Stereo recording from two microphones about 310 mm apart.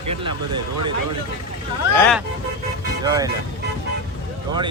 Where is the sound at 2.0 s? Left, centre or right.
Centre.